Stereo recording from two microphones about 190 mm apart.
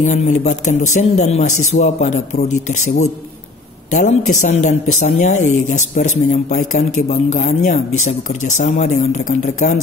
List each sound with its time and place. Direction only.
0.0 s a man's voice: 40° left (ahead or behind)